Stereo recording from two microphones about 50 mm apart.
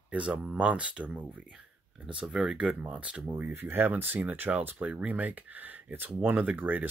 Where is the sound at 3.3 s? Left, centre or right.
Right.